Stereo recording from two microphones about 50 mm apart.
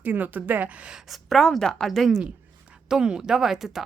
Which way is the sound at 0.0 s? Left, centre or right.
Right.